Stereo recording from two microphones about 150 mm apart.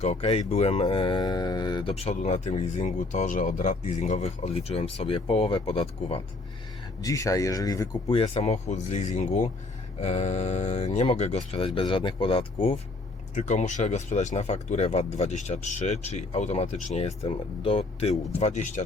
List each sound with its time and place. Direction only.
0.0 s speech: 45° left (ahead or behind); by 2.0 s 25° left (ahead or behind)
2.0 s speech: 45° left (ahead or behind)
7.0 s speech: 20° left (ahead or behind)
8.1 s speech: 40° left (ahead or behind)
13.3 s speech: 50° left (ahead or behind)
18.3 s speech: 50° left (ahead or behind)